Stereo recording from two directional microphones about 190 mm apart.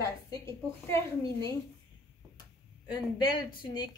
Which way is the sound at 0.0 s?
15° left (ahead or behind).